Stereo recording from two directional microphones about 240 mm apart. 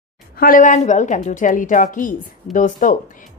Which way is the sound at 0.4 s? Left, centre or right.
Left.